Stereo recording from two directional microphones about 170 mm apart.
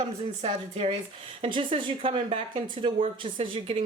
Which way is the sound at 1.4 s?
30° right (ahead or behind).